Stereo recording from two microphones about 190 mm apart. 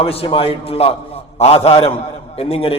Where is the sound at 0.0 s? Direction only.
30° left (ahead or behind).